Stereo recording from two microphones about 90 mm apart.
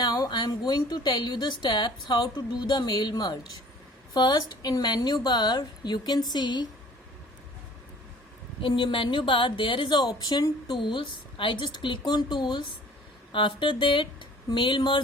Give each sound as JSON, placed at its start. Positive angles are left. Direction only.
{"t": 0.0, "sound": "a woman's voice", "side_deg": 50}
{"t": 8.6, "sound": "a woman's voice", "side_deg": 75}
{"t": 13.3, "sound": "a woman's voice", "side_deg": 65}